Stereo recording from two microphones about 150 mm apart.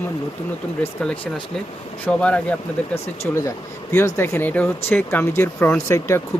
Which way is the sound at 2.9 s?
45° left (ahead or behind).